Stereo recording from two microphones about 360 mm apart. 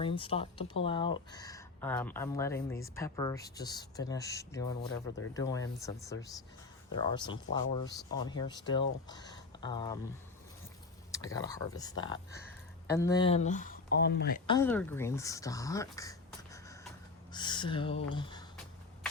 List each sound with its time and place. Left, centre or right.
0.0 s speech: centre
11.3 s speech: centre
14.4 s speech: centre